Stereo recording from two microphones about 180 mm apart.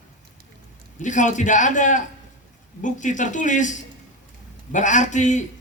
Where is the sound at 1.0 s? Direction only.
45° left (ahead or behind).